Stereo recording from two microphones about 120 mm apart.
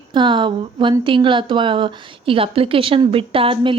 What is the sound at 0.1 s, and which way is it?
Speech, 40° right (ahead or behind).